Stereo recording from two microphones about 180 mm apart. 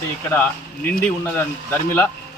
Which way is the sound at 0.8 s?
10° left (ahead or behind).